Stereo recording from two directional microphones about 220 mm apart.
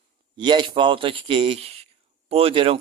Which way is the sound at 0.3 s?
20° right (ahead or behind).